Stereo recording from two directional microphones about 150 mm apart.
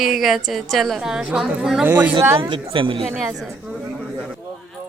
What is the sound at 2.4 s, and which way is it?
Speech, 35° right (ahead or behind).